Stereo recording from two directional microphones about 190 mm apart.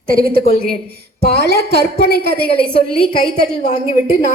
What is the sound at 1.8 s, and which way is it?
Speech, 55° left (ahead or behind).